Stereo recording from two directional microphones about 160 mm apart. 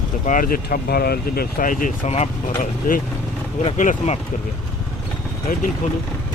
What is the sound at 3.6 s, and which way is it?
Speech, 50° left (ahead or behind).